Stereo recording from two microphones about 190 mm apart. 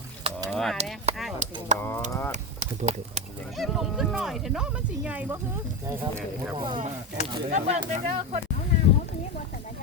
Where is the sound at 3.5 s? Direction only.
Centre (ahead or behind).